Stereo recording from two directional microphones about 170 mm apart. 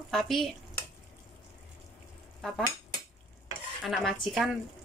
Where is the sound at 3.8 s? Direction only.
Centre (ahead or behind).